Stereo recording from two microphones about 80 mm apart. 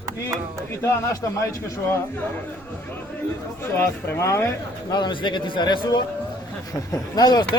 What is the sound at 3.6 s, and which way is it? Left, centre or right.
Speech, left.